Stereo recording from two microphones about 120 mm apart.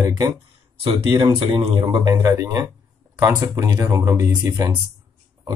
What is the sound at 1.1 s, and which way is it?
Speech, 40° right (ahead or behind).